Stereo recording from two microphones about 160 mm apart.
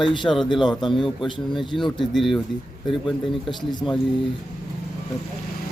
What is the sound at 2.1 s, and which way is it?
Speech, centre (ahead or behind).